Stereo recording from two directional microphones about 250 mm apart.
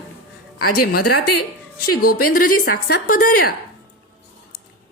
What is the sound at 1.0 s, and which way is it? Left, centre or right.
Speech, left.